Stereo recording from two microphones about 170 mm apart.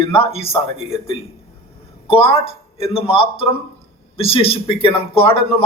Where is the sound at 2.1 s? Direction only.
35° left (ahead or behind).